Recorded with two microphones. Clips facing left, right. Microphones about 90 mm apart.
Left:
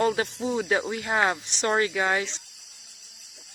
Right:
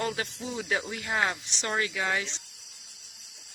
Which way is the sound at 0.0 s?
30° left (ahead or behind).